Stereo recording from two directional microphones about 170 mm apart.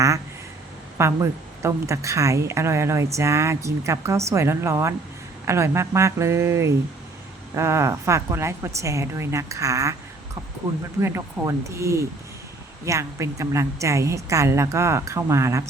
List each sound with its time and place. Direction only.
0.9 s a woman's voice: 15° right (ahead or behind)
11.0 s a woman's voice: 15° right (ahead or behind)